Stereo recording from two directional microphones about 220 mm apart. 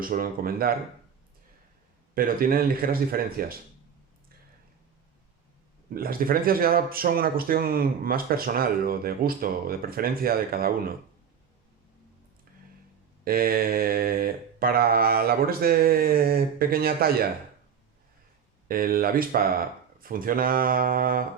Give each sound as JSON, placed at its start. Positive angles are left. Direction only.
{"t": 0.0, "sound": "speech", "side_deg": -40}
{"t": 2.1, "sound": "speech", "side_deg": -40}
{"t": 5.9, "sound": "speech", "side_deg": -40}
{"t": 13.2, "sound": "mantra", "side_deg": -40}
{"t": 18.7, "sound": "speech", "side_deg": -40}